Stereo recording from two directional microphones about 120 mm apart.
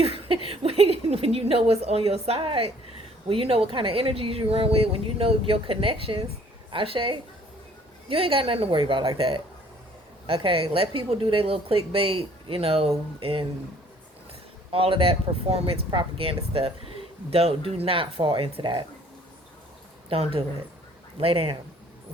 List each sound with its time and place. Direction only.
0.0 s speech: 55° right (ahead or behind)
14.7 s speech: 50° right (ahead or behind)
20.1 s speech: 50° right (ahead or behind)